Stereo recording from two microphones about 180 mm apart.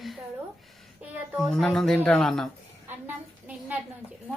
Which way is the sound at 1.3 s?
Centre (ahead or behind).